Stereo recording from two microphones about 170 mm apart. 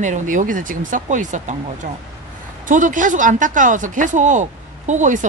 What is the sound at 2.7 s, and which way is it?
Speech, 50° right (ahead or behind).